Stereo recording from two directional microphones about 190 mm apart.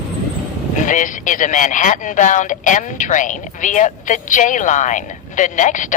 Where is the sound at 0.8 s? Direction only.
40° left (ahead or behind).